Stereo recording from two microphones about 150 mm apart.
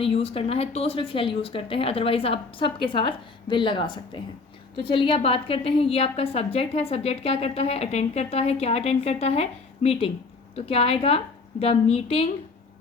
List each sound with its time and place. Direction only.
0.0 s a woman's voice: 40° left (ahead or behind)